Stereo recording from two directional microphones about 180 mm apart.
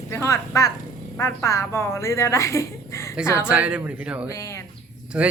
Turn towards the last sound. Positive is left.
turn(degrees=-5)  # may be behind; listen again after turning